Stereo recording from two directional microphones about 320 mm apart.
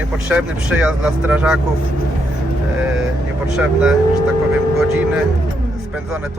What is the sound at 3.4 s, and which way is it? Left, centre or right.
Speech, centre.